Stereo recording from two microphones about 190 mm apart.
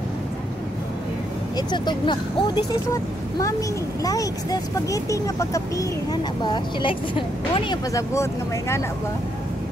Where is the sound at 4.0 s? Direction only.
20° left (ahead or behind).